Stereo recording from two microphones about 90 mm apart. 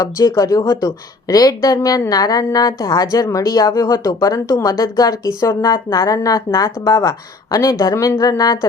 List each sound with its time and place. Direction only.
0.0 s a woman's voice: 40° left (ahead or behind)